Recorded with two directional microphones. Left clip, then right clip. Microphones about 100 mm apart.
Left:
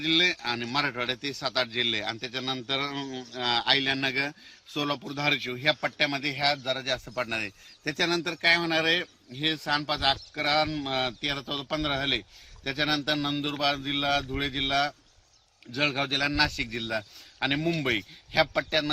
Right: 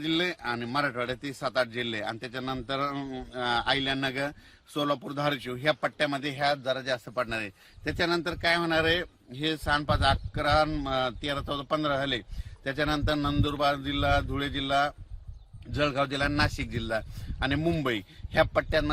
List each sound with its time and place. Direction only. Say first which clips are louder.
0.0 s a man's voice: left 5 dB; 40° right (ahead or behind)
6.7 s a man's voice: even; 15° right (ahead or behind); by 14.9 s 30° right (ahead or behind)
16.0 s a man's voice: left 2 dB; 30° right (ahead or behind)